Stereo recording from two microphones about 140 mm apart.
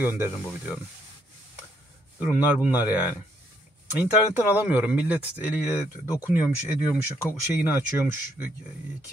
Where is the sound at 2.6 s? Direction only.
10° right (ahead or behind).